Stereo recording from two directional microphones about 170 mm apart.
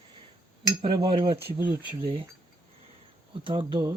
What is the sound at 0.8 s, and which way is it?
Cutlery, 30° right (ahead or behind).